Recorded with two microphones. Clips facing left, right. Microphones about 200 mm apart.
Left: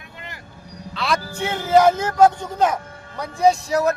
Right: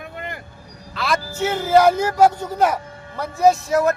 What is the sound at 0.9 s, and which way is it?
A man's voice, centre (ahead or behind).